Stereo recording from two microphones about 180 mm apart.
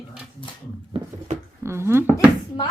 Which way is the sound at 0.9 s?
35° right (ahead or behind).